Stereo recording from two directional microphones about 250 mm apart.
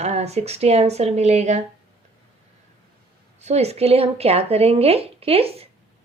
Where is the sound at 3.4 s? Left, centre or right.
Right.